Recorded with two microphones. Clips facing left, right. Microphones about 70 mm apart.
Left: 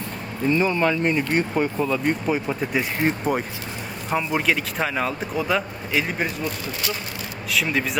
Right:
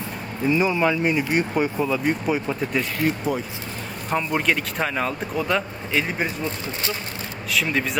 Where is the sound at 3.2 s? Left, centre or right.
Left.